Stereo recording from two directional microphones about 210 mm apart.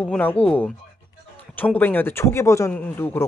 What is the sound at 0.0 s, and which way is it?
Speech, 10° left (ahead or behind).